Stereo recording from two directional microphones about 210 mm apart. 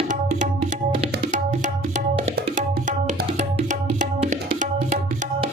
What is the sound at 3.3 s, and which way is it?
Music, 35° right (ahead or behind).